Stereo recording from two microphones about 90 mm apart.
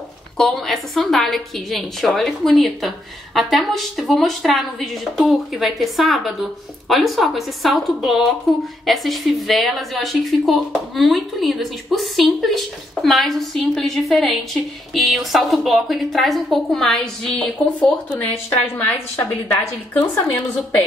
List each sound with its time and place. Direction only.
0.4 s a woman's voice: 5° left (ahead or behind)
18.5 s a woman's voice: 20° left (ahead or behind)